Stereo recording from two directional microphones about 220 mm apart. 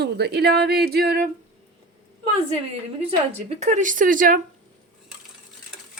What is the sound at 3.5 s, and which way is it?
Speech, 30° right (ahead or behind).